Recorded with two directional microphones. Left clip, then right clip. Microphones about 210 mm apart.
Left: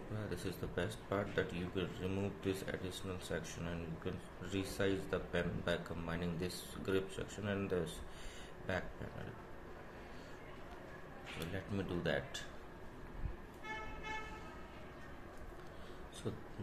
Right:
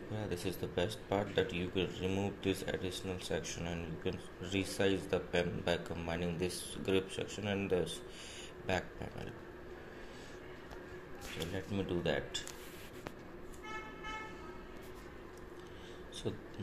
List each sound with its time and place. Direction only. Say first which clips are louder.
0.3 s speech: right 5 dB; centre (ahead or behind)
11.5 s speech: right 4 dB; centre (ahead or behind)